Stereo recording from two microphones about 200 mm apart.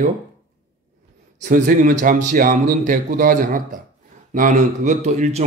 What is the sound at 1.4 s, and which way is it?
A man's voice, 40° right (ahead or behind).